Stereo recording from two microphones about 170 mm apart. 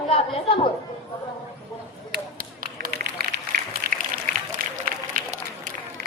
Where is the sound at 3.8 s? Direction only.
65° right (ahead or behind).